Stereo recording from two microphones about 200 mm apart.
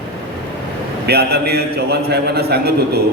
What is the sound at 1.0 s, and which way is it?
A man's voice, 55° right (ahead or behind).